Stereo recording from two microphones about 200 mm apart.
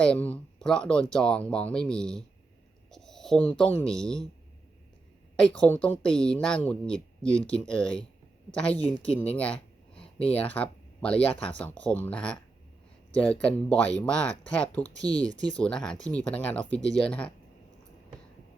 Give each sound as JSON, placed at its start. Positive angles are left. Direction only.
{"t": 0.0, "sound": "speech", "side_deg": 5}
{"t": 2.9, "sound": "a sound", "side_deg": 0}
{"t": 3.5, "sound": "speech", "side_deg": 5}
{"t": 5.4, "sound": "speech", "side_deg": 5}
{"t": 10.0, "sound": "a sound", "side_deg": 30}
{"t": 10.3, "sound": "speech", "side_deg": 10}
{"t": 15.0, "sound": "speech", "side_deg": -20}
{"t": 15.4, "sound": "speech", "side_deg": 5}